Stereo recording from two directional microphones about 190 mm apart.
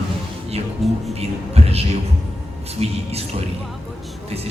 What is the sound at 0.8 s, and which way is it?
Speech, centre (ahead or behind).